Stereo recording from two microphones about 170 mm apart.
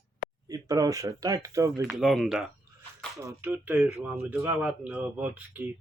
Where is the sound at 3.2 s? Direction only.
15° right (ahead or behind).